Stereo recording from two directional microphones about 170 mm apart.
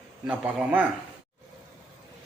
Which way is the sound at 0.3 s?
10° right (ahead or behind).